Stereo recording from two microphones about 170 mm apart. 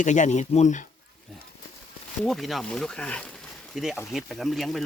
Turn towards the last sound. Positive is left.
turn(degrees=0)  # may be behind; listen again after turning